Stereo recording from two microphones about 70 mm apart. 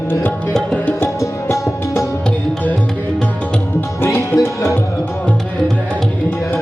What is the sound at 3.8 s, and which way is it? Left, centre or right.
Music, left.